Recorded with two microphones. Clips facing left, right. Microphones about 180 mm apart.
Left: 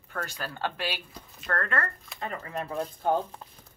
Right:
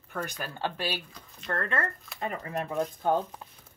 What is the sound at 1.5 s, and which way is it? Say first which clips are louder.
Speech: left 1 dB; 20° right (ahead or behind).